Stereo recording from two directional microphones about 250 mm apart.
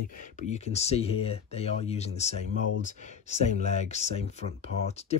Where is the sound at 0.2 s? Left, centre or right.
Left.